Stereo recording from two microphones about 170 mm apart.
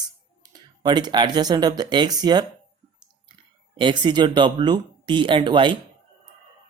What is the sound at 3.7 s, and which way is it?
Speech, 30° right (ahead or behind).